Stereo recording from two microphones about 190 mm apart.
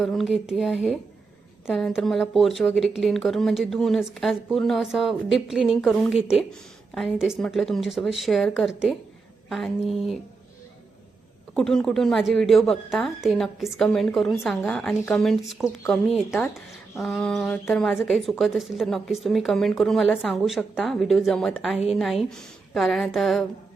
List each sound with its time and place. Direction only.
0.0 s speech: centre (ahead or behind)
11.5 s speech: 5° left (ahead or behind)